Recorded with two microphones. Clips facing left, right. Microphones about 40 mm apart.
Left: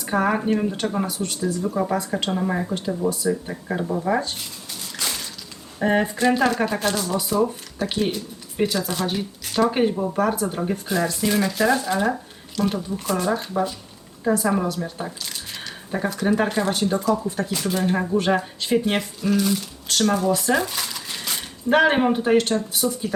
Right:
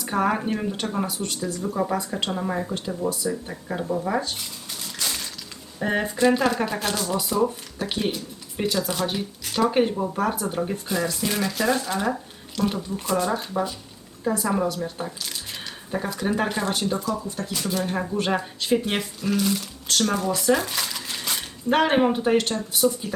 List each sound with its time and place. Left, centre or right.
0.0 s speech: centre
5.8 s speech: centre
17.0 s speech: left
17.4 s speech: centre
20.7 s cash register: centre
22.7 s speech: centre